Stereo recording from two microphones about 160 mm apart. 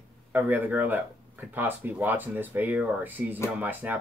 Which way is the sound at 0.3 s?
10° right (ahead or behind).